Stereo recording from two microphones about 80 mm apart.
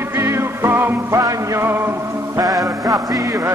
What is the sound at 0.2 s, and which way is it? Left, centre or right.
Music, right.